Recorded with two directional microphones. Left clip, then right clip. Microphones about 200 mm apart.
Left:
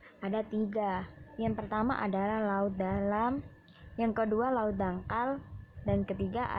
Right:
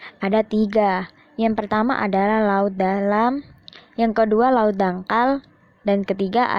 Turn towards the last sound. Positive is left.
turn(degrees=-45)  # may be behind; listen again after turning